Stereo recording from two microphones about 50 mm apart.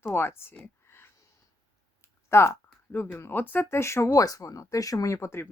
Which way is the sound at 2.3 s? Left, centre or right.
Left.